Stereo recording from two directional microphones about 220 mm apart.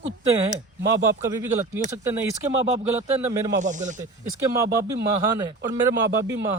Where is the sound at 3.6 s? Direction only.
35° right (ahead or behind).